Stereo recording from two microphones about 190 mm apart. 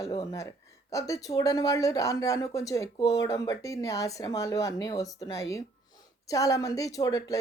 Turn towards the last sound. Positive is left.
turn(degrees=20)  # may be behind; listen again after turning